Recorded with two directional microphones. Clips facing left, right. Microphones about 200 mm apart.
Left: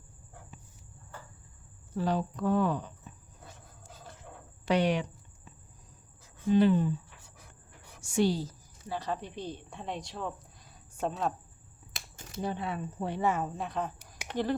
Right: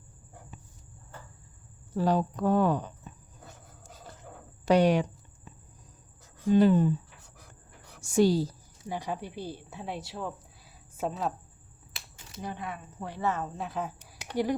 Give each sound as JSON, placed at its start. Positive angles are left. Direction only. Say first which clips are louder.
{"t": 2.0, "sound": "a woman's voice", "louder": "right 4 dB", "side_deg": -45}
{"t": 4.6, "sound": "a woman's voice", "louder": "right 5 dB", "side_deg": -40}
{"t": 6.5, "sound": "a woman's voice", "louder": "right 2 dB", "side_deg": -45}
{"t": 8.0, "sound": "a woman's voice", "louder": "right 4 dB", "side_deg": -40}
{"t": 8.9, "sound": "a woman's voice", "louder": "right 1 dB", "side_deg": -15}
{"t": 11.9, "sound": "a sound", "louder": "left 3 dB", "side_deg": 45}
{"t": 12.4, "sound": "speech", "louder": "left 4 dB", "side_deg": 30}
{"t": 13.1, "sound": "speech", "louder": "left 1 dB", "side_deg": 10}
{"t": 13.6, "sound": "speech", "louder": "even", "side_deg": -5}